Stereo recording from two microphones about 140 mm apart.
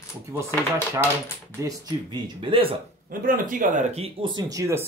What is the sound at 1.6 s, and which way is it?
Speech, 20° right (ahead or behind).